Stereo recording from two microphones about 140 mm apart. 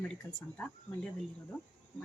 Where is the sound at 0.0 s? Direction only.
10° left (ahead or behind).